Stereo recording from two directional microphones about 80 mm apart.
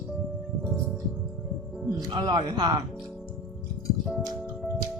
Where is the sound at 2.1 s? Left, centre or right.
Right.